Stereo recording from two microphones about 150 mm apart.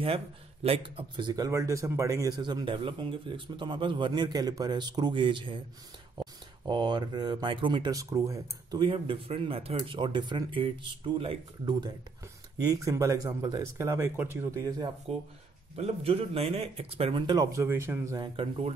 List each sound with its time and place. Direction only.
0.7 s a man's voice: 35° right (ahead or behind); by 8.4 s 20° right (ahead or behind)
8.7 s speech: 35° right (ahead or behind)
12.6 s a man's voice: 20° right (ahead or behind)
15.1 s speech: 40° right (ahead or behind); by 18.3 s 20° right (ahead or behind)
18.3 s speech: 35° right (ahead or behind)